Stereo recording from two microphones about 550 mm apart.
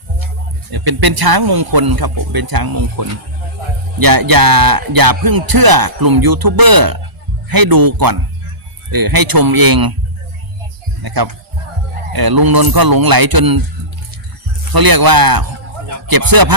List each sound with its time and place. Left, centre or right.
0.7 s speech: right
11.0 s speech: right
14.6 s speech: right